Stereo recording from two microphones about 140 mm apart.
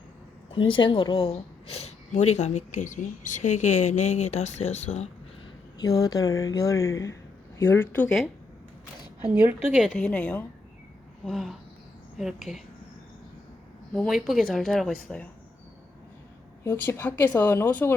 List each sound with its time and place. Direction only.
0.5 s speech: 35° left (ahead or behind); by 5.0 s 50° left (ahead or behind)
5.8 s a woman's voice: 25° left (ahead or behind)
9.6 s speech: 5° right (ahead or behind)
10.0 s speech: 10° left (ahead or behind)
13.9 s speech: centre (ahead or behind)
16.6 s speech: 15° left (ahead or behind)